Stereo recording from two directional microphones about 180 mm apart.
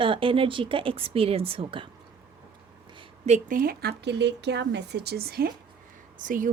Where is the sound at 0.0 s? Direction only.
30° right (ahead or behind).